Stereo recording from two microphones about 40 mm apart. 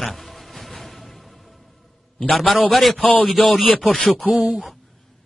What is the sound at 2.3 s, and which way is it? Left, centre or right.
A man's voice, centre.